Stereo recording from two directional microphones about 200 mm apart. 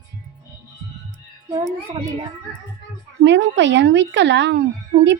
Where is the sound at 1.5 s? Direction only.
20° right (ahead or behind).